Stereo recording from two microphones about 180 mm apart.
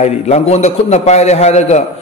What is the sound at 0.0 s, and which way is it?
A man's voice, 35° left (ahead or behind).